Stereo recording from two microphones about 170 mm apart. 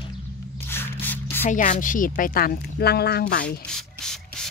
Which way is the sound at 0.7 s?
10° left (ahead or behind).